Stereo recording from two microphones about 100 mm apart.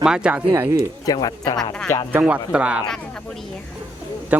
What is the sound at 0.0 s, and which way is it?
Speech, 10° right (ahead or behind).